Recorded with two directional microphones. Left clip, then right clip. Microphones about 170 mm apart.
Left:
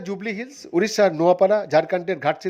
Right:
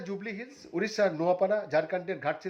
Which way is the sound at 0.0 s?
40° left (ahead or behind).